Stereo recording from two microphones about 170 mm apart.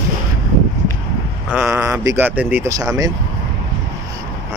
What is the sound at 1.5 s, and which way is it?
Speech, 10° right (ahead or behind).